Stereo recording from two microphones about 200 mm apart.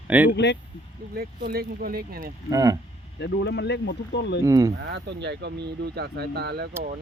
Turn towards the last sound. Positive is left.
turn(degrees=-55)  # may be behind; listen again after turning